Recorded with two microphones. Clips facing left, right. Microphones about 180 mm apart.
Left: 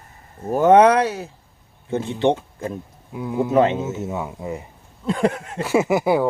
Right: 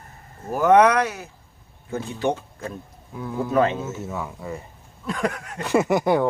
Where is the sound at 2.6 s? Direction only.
15° left (ahead or behind).